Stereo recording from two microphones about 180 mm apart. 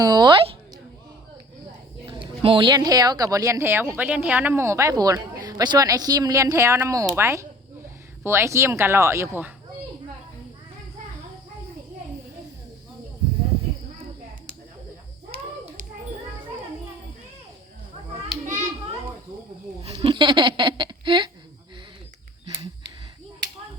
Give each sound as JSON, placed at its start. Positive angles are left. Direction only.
{"t": 0.0, "sound": "a sound", "side_deg": -25}
{"t": 2.0, "sound": "speech", "side_deg": -30}
{"t": 18.3, "sound": "hands", "side_deg": -5}
{"t": 19.8, "sound": "speech", "side_deg": -30}